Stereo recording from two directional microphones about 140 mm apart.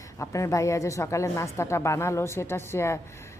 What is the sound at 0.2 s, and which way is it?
Speech, 20° left (ahead or behind).